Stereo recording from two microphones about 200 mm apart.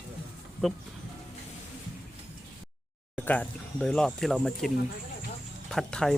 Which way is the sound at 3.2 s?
5° left (ahead or behind).